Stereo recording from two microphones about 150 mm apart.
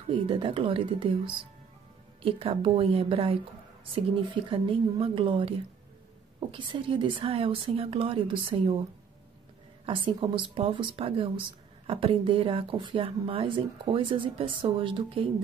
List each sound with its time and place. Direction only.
0.3 s speech: 35° right (ahead or behind)
6.5 s speech: 35° right (ahead or behind)
9.8 s speech: 35° right (ahead or behind)